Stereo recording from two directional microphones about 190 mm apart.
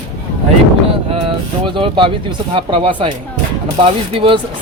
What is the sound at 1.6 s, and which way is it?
Speech, 25° right (ahead or behind).